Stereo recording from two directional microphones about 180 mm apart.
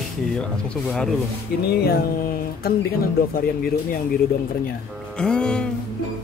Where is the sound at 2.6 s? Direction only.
55° left (ahead or behind).